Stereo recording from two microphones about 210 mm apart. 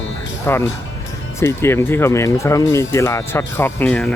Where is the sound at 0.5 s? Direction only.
10° left (ahead or behind).